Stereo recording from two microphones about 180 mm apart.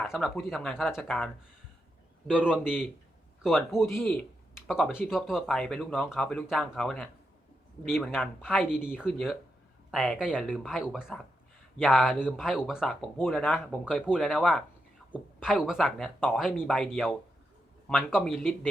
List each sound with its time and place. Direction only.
0.0 s a man's voice: centre (ahead or behind)
2.6 s speech: 10° left (ahead or behind)
3.4 s speech: centre (ahead or behind)
4.0 s a sound: 5° left (ahead or behind)
4.7 s speech: 5° right (ahead or behind)